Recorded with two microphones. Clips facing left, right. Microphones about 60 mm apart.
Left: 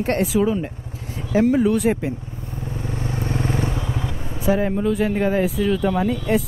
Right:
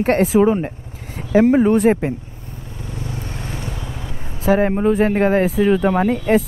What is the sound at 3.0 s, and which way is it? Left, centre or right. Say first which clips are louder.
Vehicle: left 7 dB; left.